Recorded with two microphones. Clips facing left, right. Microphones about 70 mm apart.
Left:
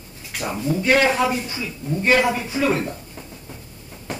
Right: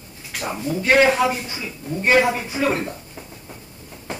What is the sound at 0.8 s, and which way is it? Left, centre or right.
A woman's voice, right.